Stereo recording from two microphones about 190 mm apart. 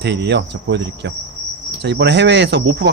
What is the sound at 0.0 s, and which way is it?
Cricket, 65° right (ahead or behind).